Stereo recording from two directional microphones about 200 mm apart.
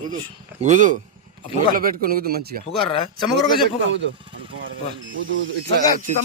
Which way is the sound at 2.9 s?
30° left (ahead or behind).